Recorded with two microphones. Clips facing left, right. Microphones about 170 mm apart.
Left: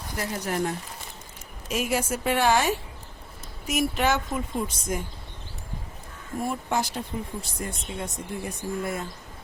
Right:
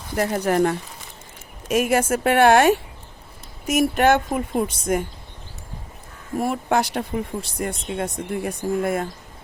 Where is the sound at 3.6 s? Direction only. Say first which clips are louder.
Right 7 dB; 50° right (ahead or behind).